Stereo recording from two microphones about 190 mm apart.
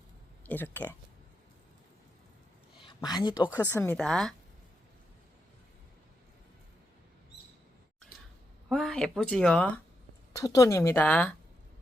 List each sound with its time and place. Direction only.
0.4 s speech: 10° left (ahead or behind)
2.8 s speech: 20° left (ahead or behind)
3.5 s speech: 10° left (ahead or behind)
8.7 s speech: centre (ahead or behind)
10.3 s speech: 20° left (ahead or behind)